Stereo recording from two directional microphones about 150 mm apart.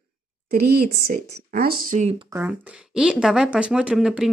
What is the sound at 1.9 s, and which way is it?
Speech, 50° right (ahead or behind).